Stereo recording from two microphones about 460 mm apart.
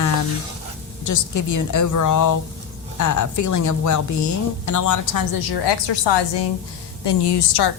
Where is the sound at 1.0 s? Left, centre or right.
Left.